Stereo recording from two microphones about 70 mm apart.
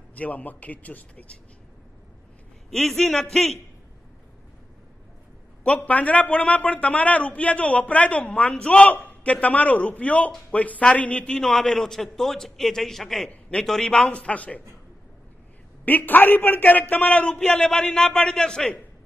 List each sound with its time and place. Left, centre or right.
0.1 s a man's voice: left
2.7 s a man's voice: centre
5.9 s a man's voice: left; by 13.3 s centre
13.3 s a man's voice: centre
15.8 s a man's voice: left